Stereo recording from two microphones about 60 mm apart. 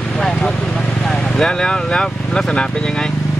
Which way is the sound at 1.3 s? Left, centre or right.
Centre.